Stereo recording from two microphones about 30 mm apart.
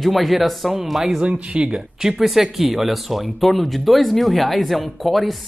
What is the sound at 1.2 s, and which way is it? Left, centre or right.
Speech, right.